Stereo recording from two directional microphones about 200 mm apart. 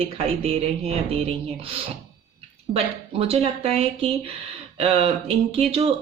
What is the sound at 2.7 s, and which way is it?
Speech, 30° right (ahead or behind).